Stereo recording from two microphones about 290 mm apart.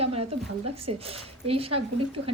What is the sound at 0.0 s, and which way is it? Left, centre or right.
Speech, right.